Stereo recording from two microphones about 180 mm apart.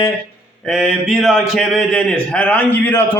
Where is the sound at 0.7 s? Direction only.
Centre (ahead or behind).